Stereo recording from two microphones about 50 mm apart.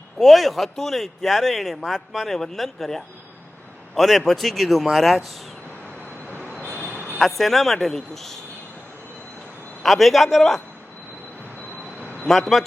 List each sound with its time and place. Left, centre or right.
0.2 s speech: centre
6.8 s a sound: right
7.2 s speech: centre
9.8 s speech: centre
11.9 s a sound: left
12.3 s speech: centre